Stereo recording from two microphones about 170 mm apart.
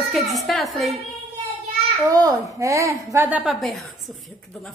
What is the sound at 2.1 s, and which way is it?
A woman's voice, 20° right (ahead or behind).